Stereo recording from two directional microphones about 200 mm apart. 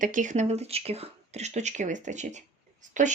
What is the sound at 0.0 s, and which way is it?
Speech, 40° right (ahead or behind).